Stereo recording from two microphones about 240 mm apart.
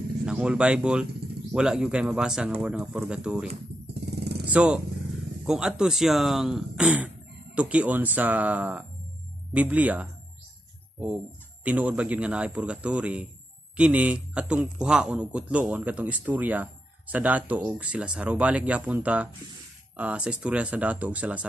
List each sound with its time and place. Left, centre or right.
0.2 s speech: centre
4.2 s vehicle: right
4.5 s speech: centre
11.6 s speech: centre